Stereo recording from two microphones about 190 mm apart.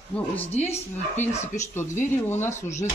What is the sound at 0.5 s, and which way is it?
Speech, 35° left (ahead or behind).